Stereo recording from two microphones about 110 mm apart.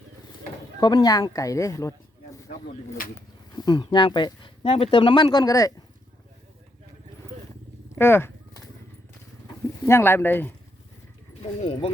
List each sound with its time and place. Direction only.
0.8 s speech: 40° left (ahead or behind)
3.5 s speech: 40° left (ahead or behind)
7.9 s speech: 20° left (ahead or behind)
9.8 s speech: 20° left (ahead or behind)
11.6 s speech: 70° left (ahead or behind)